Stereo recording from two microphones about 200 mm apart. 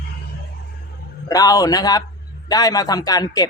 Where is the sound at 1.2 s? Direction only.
15° left (ahead or behind).